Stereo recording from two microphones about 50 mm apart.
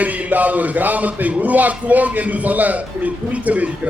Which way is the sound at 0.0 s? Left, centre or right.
Right.